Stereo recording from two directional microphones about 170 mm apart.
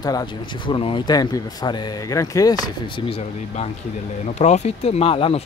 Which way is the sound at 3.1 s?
40° left (ahead or behind).